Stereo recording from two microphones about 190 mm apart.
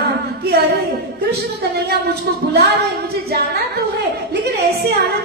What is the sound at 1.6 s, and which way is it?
Speech, 60° right (ahead or behind).